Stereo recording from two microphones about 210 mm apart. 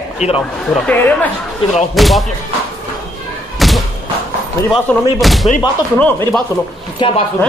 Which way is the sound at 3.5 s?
Centre (ahead or behind).